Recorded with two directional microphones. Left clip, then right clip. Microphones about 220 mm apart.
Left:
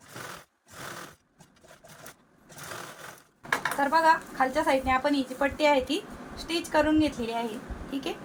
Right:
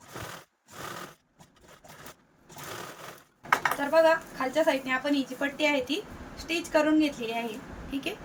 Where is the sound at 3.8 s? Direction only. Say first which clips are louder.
Left 1 dB; 15° left (ahead or behind).